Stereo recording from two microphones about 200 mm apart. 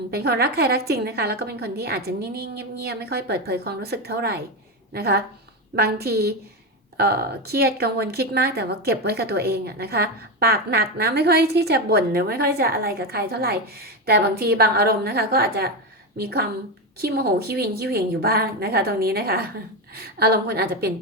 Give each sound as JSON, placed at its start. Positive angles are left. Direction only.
{"t": 0.1, "sound": "a woman's voice", "side_deg": -55}